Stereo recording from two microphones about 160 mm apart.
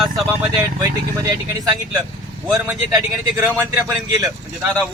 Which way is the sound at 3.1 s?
Centre (ahead or behind).